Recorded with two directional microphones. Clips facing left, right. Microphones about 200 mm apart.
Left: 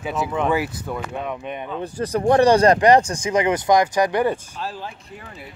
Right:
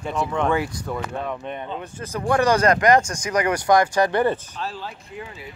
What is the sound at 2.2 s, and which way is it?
Speech, 30° left (ahead or behind).